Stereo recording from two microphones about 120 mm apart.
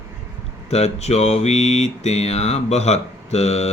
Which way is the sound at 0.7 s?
65° left (ahead or behind).